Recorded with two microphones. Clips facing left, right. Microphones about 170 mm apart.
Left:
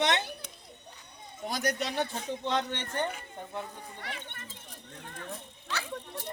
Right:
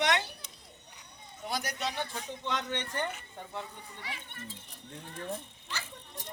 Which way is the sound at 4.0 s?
65° left (ahead or behind).